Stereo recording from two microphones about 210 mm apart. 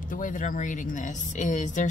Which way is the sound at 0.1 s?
40° left (ahead or behind).